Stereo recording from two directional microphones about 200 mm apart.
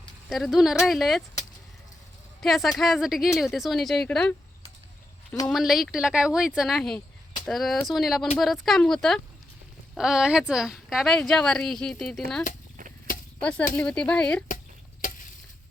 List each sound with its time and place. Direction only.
0.3 s speech: centre (ahead or behind)
2.4 s speech: centre (ahead or behind)
5.5 s speech: centre (ahead or behind)
13.1 s chop: 45° left (ahead or behind)
13.4 s speech: 5° left (ahead or behind)